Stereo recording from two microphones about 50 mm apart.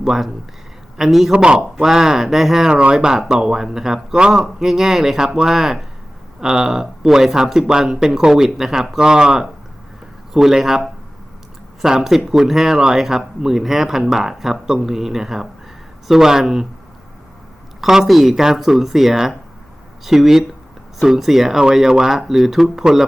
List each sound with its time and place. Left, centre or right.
0.0 s speech: centre
1.3 s speech: centre
1.7 s speech: centre
17.7 s speech: centre